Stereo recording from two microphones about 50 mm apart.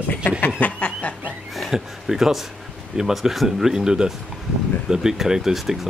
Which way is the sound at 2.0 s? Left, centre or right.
Centre.